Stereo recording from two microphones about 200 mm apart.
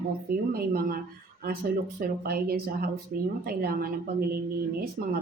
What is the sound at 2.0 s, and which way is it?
Speech, 50° right (ahead or behind).